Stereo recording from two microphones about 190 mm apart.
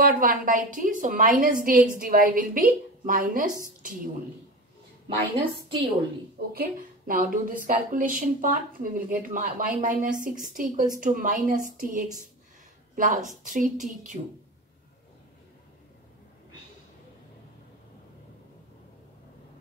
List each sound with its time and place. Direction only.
0.0 s a woman's voice: 50° right (ahead or behind)
5.0 s a woman's voice: 25° right (ahead or behind)
6.5 s a woman's voice: 50° right (ahead or behind)